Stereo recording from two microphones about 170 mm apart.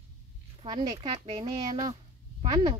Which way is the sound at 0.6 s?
25° right (ahead or behind).